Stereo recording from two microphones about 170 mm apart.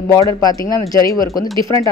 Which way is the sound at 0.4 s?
20° left (ahead or behind).